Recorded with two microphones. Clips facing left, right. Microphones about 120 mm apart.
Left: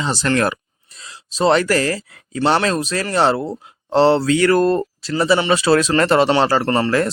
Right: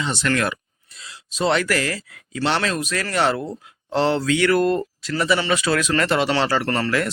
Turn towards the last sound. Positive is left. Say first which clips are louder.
# left 5 dB
turn(degrees=25)  # may be behind; listen again after turning